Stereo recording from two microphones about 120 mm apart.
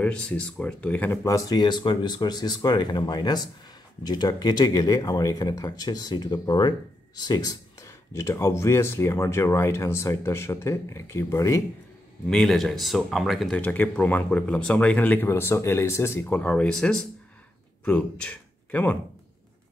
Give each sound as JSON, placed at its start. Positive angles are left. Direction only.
{"t": 0.0, "sound": "speech", "side_deg": 10}
{"t": 1.2, "sound": "speech", "side_deg": 30}
{"t": 12.3, "sound": "speech", "side_deg": 0}
{"t": 13.6, "sound": "speech", "side_deg": 15}